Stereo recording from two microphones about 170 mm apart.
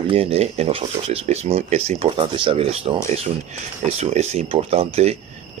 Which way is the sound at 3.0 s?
40° right (ahead or behind).